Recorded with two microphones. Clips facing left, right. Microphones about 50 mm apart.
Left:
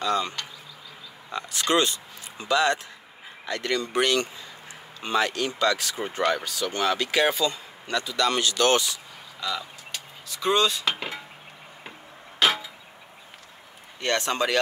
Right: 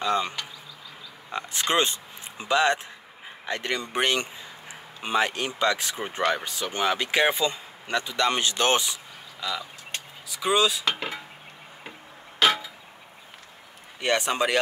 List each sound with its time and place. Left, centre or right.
0.0 s speech: right
1.3 s speech: right
9.4 s speech: centre
12.4 s clock: centre
14.0 s speech: centre